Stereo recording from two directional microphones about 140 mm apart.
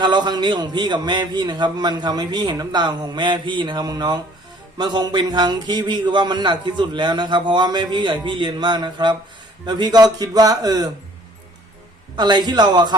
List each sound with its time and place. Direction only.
0.0 s a man's voice: 30° right (ahead or behind)
12.1 s a man's voice: 30° right (ahead or behind)